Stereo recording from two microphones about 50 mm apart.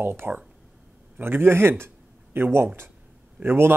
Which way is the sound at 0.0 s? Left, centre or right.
Right.